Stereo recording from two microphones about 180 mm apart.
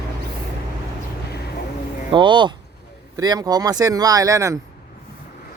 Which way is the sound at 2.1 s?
25° right (ahead or behind).